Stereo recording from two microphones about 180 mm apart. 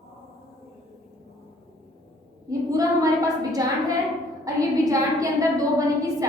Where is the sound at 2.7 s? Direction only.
20° right (ahead or behind).